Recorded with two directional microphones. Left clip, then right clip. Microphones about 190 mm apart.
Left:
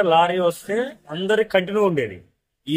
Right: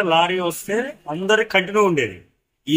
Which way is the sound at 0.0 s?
15° left (ahead or behind).